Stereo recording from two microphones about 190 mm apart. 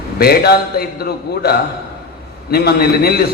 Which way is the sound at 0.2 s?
55° left (ahead or behind).